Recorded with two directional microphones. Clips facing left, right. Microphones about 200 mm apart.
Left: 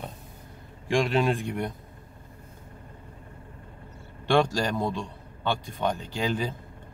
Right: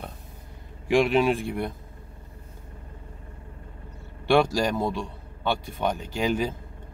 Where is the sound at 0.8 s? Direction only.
5° right (ahead or behind).